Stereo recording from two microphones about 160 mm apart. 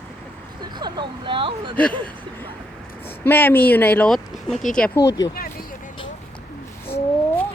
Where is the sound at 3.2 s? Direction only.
10° left (ahead or behind).